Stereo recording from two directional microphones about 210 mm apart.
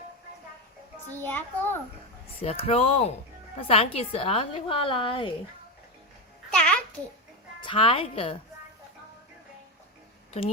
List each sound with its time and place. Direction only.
1.1 s a child's voice: 10° left (ahead or behind)
2.4 s a woman's voice: 30° left (ahead or behind)
6.5 s babbling: 5° left (ahead or behind)
7.6 s a woman's voice: 25° left (ahead or behind)